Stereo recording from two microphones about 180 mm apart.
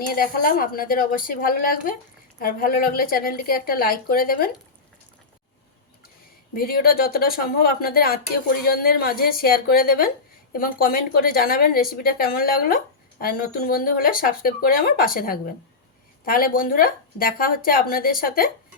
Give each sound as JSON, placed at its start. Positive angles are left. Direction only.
{"t": 0.1, "sound": "speech", "side_deg": 55}
{"t": 6.5, "sound": "speech", "side_deg": 55}